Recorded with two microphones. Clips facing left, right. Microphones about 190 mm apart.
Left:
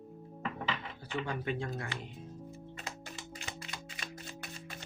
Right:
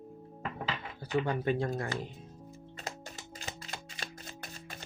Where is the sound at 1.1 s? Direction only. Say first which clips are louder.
Right 6 dB; 40° right (ahead or behind).